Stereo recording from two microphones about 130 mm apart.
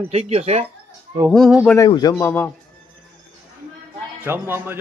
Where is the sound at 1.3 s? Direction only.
Centre (ahead or behind).